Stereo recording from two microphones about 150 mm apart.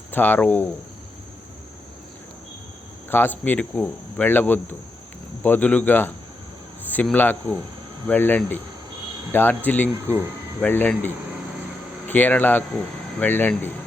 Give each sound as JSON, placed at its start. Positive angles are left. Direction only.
{"t": 0.1, "sound": "speech", "side_deg": 10}
{"t": 3.1, "sound": "speech", "side_deg": 15}